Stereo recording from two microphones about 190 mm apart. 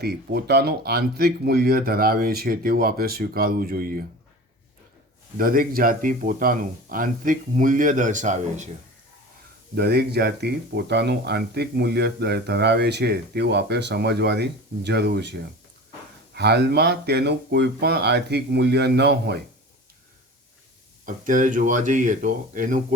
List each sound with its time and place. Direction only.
0.0 s speech: 55° right (ahead or behind)
5.4 s speech: 50° right (ahead or behind)
9.7 s speech: 60° right (ahead or behind)
21.0 s speech: 45° right (ahead or behind)